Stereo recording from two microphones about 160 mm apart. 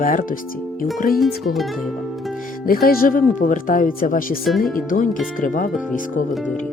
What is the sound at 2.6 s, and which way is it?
Speech, 65° left (ahead or behind).